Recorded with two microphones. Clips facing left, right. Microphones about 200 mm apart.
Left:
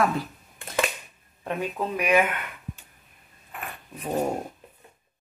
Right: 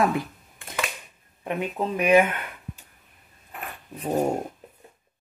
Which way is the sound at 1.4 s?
20° right (ahead or behind).